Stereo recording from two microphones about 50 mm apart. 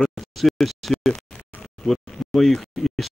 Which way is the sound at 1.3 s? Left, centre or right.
Left.